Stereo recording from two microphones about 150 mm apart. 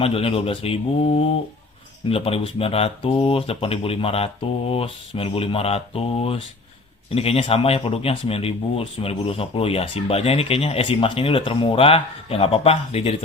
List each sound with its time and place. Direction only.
0.0 s speech: 40° left (ahead or behind)